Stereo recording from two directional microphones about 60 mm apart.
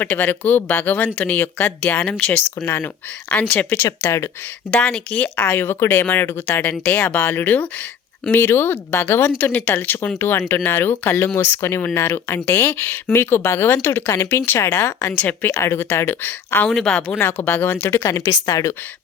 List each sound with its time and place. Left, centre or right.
0.0 s speech: left
2.8 s speech: left
4.7 s speech: centre
5.5 s speech: left
6.8 s speech: left
7.2 s speech: left
8.3 s speech: left
14.1 s speech: left
14.4 s speech: left
15.2 s speech: left
15.4 s speech: left
16.6 s speech: centre
17.2 s speech: left
18.4 s speech: left